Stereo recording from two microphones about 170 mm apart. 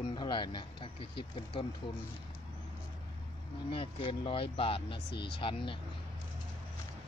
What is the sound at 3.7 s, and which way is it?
Speech, 30° left (ahead or behind).